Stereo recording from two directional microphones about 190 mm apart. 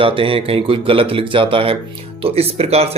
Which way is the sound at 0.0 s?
30° right (ahead or behind).